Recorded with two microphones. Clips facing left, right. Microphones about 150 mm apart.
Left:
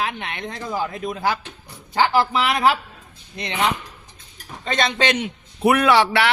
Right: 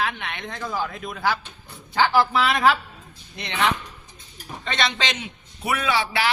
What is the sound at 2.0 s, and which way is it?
Speech, 15° left (ahead or behind).